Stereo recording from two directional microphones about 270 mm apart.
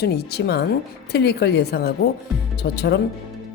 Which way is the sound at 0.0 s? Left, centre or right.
Left.